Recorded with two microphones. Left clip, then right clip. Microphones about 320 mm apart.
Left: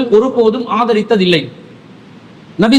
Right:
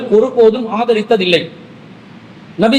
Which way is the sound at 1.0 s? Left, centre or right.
Left.